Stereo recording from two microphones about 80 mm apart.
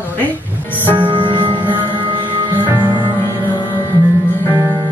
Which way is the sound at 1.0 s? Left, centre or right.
Right.